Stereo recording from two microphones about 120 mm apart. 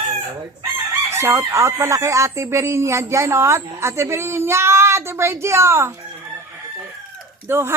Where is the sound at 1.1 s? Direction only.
20° right (ahead or behind).